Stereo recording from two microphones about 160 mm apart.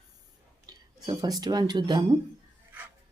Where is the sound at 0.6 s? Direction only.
25° right (ahead or behind).